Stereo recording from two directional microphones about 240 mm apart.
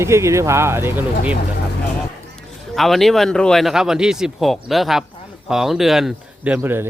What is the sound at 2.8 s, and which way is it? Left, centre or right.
Speech, centre.